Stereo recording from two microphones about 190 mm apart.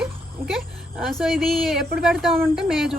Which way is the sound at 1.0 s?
Centre (ahead or behind).